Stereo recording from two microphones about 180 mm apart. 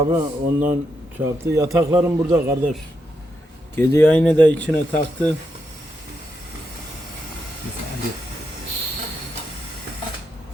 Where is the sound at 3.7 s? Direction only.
15° left (ahead or behind).